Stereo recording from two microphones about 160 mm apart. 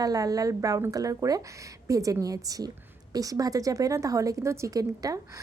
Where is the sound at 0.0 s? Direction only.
20° right (ahead or behind).